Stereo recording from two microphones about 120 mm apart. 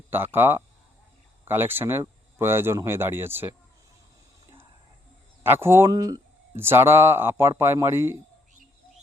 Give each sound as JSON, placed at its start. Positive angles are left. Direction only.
{"t": 0.1, "sound": "speech", "side_deg": -20}
{"t": 5.4, "sound": "speech", "side_deg": -20}